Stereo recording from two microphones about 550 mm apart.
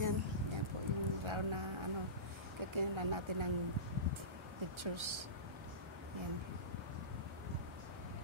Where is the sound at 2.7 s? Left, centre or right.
Right.